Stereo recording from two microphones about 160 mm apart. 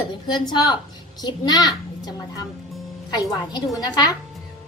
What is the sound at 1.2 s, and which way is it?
Speech, 25° left (ahead or behind).